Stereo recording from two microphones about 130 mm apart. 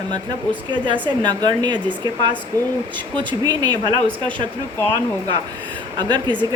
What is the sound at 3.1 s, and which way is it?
Speech, 35° right (ahead or behind).